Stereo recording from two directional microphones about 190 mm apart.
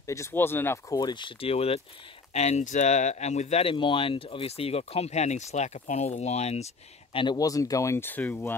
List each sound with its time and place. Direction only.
0.0 s speech: 15° left (ahead or behind); by 6.7 s 35° left (ahead or behind)
7.2 s speech: 20° left (ahead or behind)